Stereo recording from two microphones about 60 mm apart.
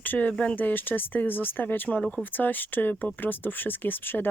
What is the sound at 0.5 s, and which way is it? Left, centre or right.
Speech, left.